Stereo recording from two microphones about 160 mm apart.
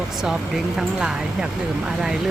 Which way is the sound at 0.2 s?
5° right (ahead or behind).